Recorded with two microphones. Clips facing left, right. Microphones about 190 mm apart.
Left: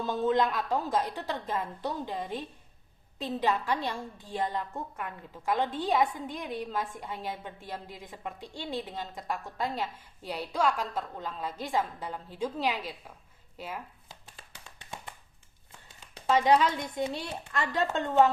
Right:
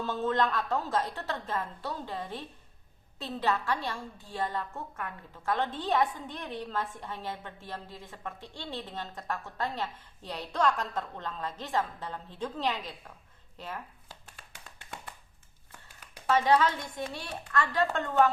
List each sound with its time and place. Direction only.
0.0 s a woman's voice: 15° left (ahead or behind)
16.0 s a sound: 25° left (ahead or behind)
16.3 s a woman's voice: 15° left (ahead or behind)